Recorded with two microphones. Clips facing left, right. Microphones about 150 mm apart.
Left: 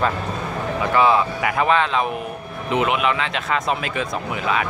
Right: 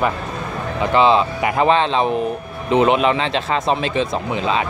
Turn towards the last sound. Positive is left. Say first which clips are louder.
# right 3 dB
turn(degrees=-25)  # may be behind; listen again after turning